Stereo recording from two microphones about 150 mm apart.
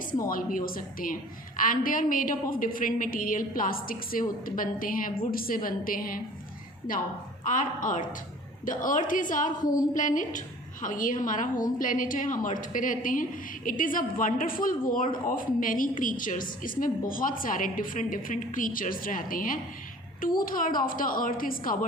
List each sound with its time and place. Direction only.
0.3 s a woman's voice: 70° left (ahead or behind)